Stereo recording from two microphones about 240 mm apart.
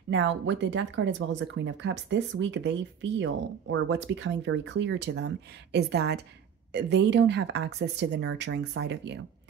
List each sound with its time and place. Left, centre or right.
0.1 s speech: right